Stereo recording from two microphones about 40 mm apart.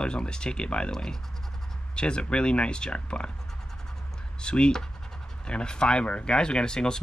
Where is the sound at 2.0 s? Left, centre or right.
Left.